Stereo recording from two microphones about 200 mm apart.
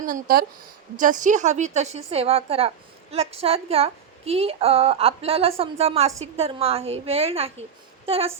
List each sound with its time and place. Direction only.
0.0 s a woman's voice: 45° right (ahead or behind); by 8.3 s 30° right (ahead or behind)